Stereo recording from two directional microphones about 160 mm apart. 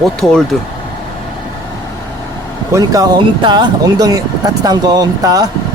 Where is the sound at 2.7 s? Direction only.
20° right (ahead or behind).